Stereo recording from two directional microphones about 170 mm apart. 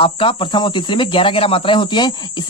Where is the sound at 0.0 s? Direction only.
30° left (ahead or behind).